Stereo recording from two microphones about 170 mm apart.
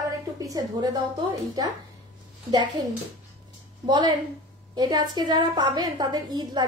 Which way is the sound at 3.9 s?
25° right (ahead or behind).